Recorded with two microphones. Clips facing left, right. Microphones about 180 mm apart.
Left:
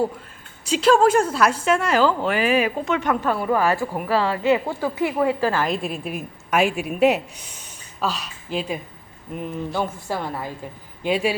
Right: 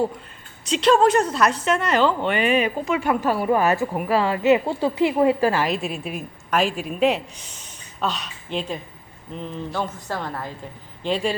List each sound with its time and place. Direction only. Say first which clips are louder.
0.7 s a woman's voice: left 1 dB; 5° left (ahead or behind)
3.5 s a woman's voice: right 1 dB; 20° right (ahead or behind)
5.6 s a woman's voice: even; centre (ahead or behind)